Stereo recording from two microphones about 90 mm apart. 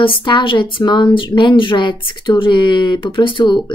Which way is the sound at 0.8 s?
55° left (ahead or behind).